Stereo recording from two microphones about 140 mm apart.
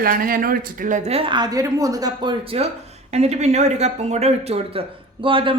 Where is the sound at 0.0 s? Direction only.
90° right; by 1.1 s 65° right (ahead or behind).